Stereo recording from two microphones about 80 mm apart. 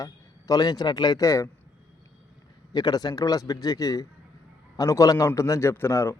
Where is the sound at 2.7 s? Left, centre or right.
Left.